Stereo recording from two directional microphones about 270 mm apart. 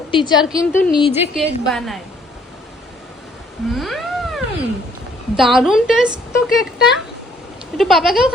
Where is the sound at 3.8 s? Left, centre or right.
Centre.